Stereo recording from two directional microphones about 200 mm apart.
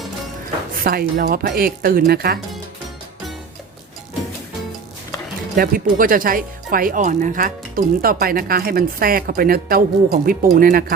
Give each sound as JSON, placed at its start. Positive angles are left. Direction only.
{"t": 0.7, "sound": "speech", "side_deg": -45}
{"t": 5.5, "sound": "speech", "side_deg": -45}